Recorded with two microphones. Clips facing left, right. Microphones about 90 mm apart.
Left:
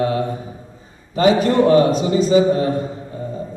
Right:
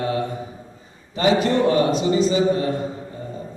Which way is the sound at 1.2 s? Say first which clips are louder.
Left 4 dB; 40° left (ahead or behind).